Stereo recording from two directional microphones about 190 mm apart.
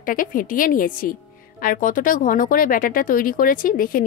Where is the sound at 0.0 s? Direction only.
45° left (ahead or behind).